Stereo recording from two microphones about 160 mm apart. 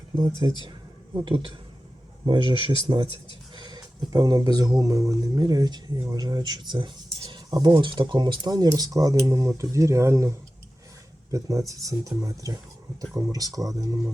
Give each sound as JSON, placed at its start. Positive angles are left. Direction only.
{"t": 0.2, "sound": "speech", "side_deg": -25}